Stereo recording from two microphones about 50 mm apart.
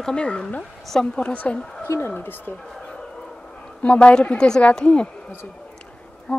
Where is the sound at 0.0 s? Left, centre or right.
Centre.